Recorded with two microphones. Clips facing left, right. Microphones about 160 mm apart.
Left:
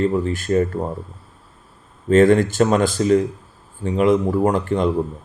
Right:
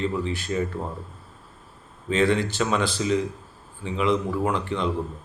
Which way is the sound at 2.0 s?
45° left (ahead or behind).